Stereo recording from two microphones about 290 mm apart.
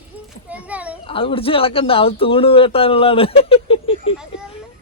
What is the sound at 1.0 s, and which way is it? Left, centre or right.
Speech, centre.